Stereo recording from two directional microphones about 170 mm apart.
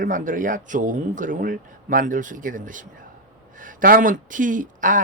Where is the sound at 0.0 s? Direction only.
50° right (ahead or behind).